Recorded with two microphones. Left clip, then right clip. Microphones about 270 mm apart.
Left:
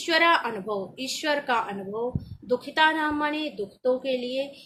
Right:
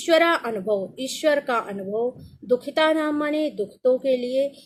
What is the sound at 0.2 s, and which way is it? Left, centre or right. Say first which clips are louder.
A woman's voice: right 1 dB; centre.